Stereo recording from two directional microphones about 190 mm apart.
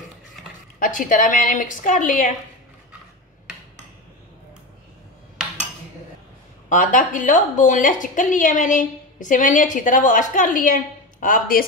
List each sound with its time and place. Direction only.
0.7 s a woman's voice: 45° left (ahead or behind)
5.4 s cutlery: 5° right (ahead or behind)
6.7 s a woman's voice: 45° left (ahead or behind)